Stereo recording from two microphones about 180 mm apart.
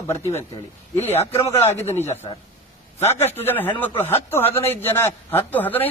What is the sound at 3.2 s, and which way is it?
Speech, 10° left (ahead or behind).